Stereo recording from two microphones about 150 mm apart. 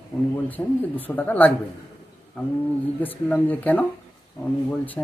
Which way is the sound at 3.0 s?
10° left (ahead or behind).